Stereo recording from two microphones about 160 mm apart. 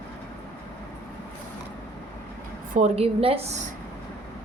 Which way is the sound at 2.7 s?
40° right (ahead or behind).